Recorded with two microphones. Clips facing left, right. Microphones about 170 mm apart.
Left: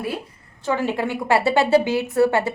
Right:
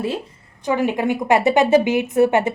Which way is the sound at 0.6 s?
15° right (ahead or behind).